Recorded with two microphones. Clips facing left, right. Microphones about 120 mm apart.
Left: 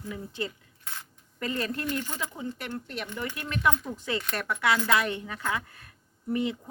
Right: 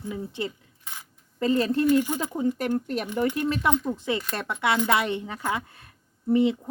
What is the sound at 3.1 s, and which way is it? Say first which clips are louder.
Speech: right 10 dB; 15° right (ahead or behind).